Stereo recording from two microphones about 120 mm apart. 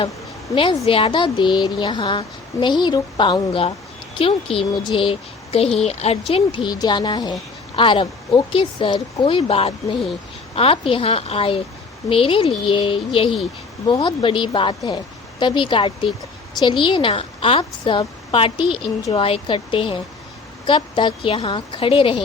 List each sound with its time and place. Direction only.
0.5 s speech: 45° left (ahead or behind)
6.3 s speech: 45° left (ahead or behind)
9.2 s speech: 50° left (ahead or behind)